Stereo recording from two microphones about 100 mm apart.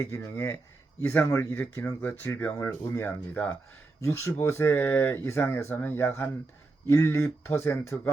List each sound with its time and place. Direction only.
0.0 s speech: 30° left (ahead or behind)
4.0 s speech: 30° left (ahead or behind)